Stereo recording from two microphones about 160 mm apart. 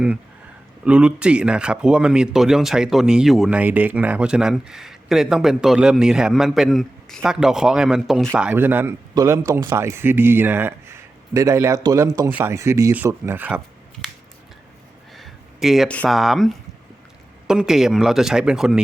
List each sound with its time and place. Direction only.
0.9 s speech: 5° right (ahead or behind)
15.1 s a sound: centre (ahead or behind)
16.0 s speech: centre (ahead or behind)
17.5 s speech: 5° right (ahead or behind)